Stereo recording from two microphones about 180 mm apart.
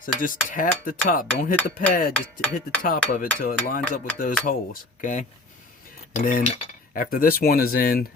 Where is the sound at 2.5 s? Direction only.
50° left (ahead or behind).